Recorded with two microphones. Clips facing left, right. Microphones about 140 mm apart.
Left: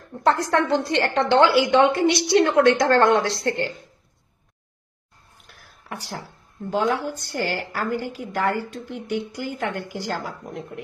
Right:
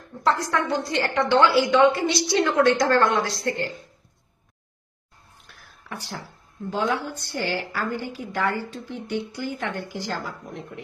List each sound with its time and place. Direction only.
0.2 s a woman's voice: 70° left (ahead or behind)
6.7 s a woman's voice: 40° left (ahead or behind)